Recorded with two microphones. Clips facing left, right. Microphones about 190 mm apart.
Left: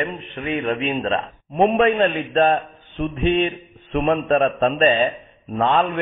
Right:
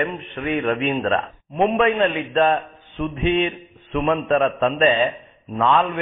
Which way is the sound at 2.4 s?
35° left (ahead or behind).